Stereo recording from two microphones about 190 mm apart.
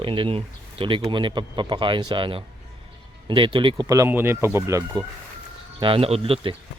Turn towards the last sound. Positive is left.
turn(degrees=-30)  # may be behind; listen again after turning